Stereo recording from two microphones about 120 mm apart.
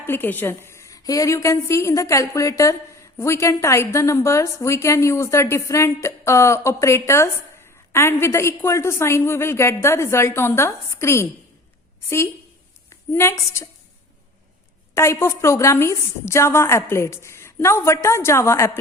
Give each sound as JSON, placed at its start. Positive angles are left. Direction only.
{"t": 0.0, "sound": "a woman's voice", "side_deg": 15}
{"t": 14.9, "sound": "a woman's voice", "side_deg": 20}